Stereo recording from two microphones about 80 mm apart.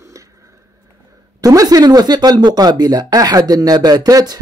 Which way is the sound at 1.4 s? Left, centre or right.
Right.